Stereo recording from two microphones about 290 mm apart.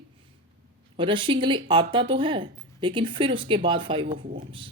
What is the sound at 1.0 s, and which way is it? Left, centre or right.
Speech, centre.